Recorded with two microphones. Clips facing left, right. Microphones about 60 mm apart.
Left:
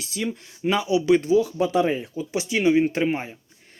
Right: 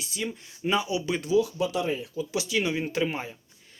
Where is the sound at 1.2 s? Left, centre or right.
Left.